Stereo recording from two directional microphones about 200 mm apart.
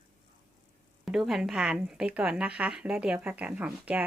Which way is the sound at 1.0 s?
Centre (ahead or behind).